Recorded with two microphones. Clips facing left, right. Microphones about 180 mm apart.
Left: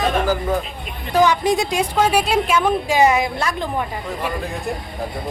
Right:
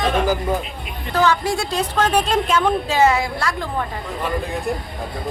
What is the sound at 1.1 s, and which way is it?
A woman's voice, 15° left (ahead or behind).